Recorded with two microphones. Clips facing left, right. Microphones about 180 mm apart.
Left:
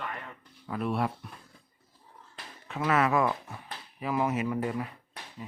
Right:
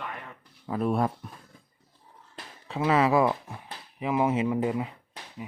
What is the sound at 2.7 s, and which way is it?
Speech, 25° right (ahead or behind).